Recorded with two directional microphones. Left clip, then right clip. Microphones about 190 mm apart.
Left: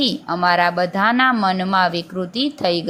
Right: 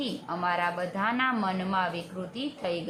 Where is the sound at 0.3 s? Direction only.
30° left (ahead or behind).